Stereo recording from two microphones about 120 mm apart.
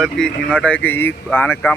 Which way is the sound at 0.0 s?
5° left (ahead or behind).